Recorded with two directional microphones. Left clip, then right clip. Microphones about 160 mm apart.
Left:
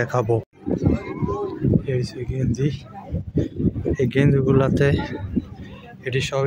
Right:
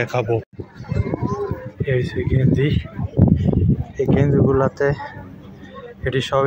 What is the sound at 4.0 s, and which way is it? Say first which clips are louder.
Speech: right 4 dB; 20° left (ahead or behind).